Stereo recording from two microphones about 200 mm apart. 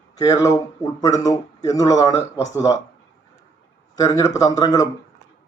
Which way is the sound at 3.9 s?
15° left (ahead or behind).